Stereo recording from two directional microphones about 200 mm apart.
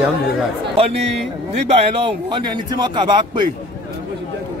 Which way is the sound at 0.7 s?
30° right (ahead or behind).